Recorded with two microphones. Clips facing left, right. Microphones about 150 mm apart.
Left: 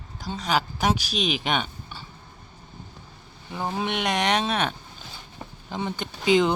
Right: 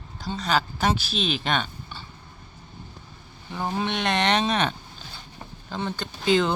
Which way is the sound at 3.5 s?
5° left (ahead or behind).